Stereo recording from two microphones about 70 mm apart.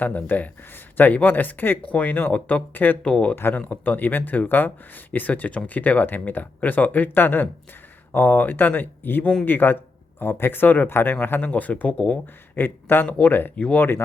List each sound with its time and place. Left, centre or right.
0.0 s speech: left
3.3 s speech: left
13.1 s speech: centre